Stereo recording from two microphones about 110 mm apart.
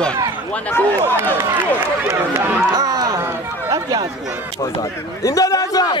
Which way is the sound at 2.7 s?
35° right (ahead or behind).